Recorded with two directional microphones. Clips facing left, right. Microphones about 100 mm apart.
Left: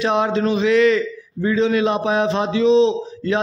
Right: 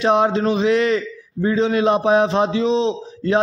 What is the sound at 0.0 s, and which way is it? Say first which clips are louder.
A man's voice: right 2 dB; 40° right (ahead or behind).